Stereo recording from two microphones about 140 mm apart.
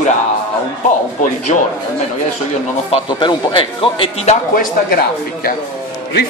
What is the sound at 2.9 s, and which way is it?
A man's voice, 35° left (ahead or behind).